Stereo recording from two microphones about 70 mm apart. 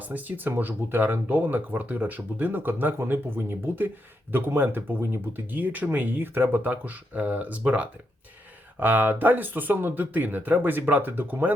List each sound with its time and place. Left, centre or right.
0.0 s speech: right